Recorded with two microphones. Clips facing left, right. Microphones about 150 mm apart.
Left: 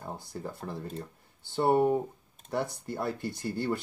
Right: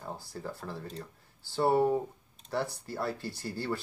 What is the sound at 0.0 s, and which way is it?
Speech, 20° left (ahead or behind).